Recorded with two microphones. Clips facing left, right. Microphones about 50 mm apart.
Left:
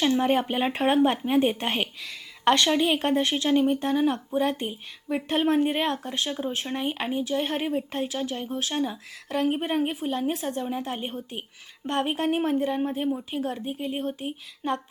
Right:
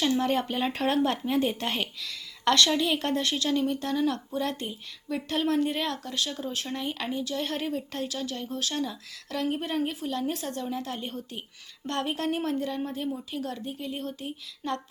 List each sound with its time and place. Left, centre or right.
0.0 s speech: left